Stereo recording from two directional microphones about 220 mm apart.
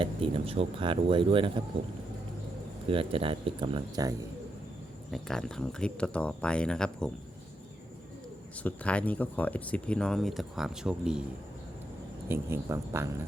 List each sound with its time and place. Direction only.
0.0 s speech: 25° right (ahead or behind)
2.9 s speech: 25° right (ahead or behind)
5.1 s speech: centre (ahead or behind)
8.5 s speech: 5° left (ahead or behind)
12.3 s speech: 10° right (ahead or behind)